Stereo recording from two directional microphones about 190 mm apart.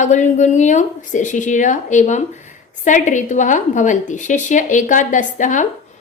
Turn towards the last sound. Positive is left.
turn(degrees=40)  # may be behind; listen again after turning